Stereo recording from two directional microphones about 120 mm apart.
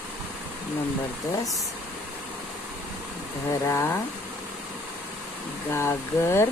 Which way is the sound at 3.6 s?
20° left (ahead or behind).